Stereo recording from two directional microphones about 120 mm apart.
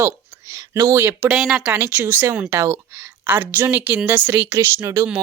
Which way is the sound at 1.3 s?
5° right (ahead or behind).